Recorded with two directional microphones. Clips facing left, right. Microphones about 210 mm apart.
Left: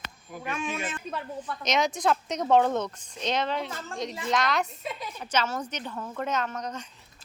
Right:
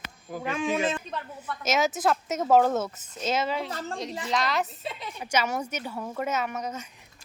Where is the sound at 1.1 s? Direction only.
10° left (ahead or behind).